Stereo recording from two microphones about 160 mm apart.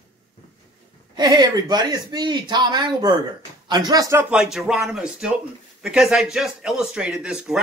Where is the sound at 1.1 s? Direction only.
25° right (ahead or behind).